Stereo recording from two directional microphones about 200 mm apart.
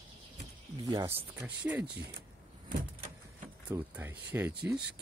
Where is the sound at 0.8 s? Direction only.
15° right (ahead or behind).